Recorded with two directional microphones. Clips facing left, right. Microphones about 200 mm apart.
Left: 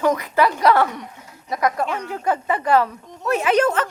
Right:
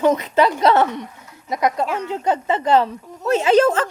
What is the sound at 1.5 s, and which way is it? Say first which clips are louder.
Speech: right 1 dB; 20° right (ahead or behind).